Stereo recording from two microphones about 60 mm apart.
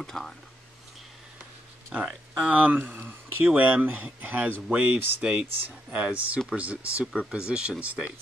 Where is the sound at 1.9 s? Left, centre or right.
Right.